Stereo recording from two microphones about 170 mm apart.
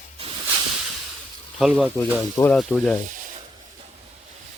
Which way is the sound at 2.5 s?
Centre (ahead or behind).